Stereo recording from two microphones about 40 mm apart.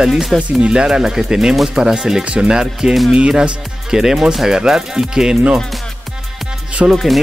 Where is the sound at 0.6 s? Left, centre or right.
Right.